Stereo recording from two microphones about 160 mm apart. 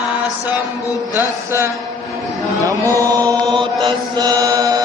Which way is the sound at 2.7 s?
20° right (ahead or behind).